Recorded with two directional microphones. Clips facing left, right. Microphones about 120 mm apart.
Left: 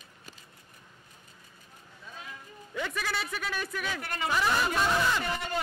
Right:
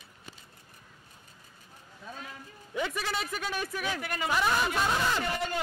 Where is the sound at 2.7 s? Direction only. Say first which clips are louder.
Right 1 dB; 15° right (ahead or behind).